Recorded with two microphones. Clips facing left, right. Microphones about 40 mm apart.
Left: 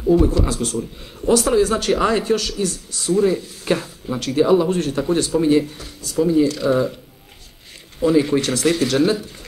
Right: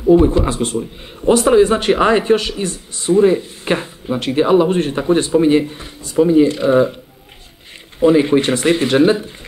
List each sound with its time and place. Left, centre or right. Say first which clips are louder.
0.0 s speech: right 5 dB; right
8.0 s speech: right 5 dB; right